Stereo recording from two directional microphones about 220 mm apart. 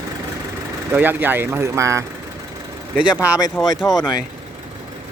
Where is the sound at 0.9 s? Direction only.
10° right (ahead or behind).